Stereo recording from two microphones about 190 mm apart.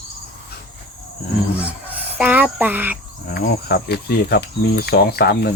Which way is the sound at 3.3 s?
55° left (ahead or behind).